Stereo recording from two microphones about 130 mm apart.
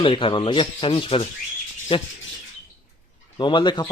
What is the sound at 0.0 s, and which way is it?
A man's voice, 40° left (ahead or behind).